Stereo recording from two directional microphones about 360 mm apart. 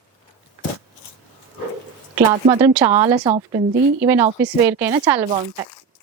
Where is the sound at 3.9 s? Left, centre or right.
Centre.